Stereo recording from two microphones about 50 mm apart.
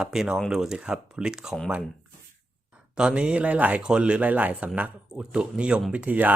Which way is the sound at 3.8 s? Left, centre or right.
Centre.